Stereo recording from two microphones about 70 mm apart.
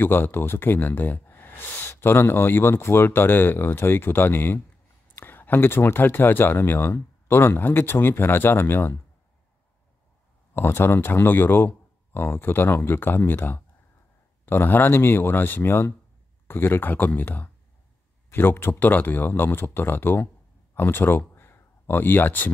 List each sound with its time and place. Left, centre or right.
0.0 s speech: left
10.5 s speech: left